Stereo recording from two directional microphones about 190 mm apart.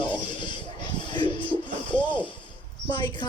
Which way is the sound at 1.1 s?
25° left (ahead or behind).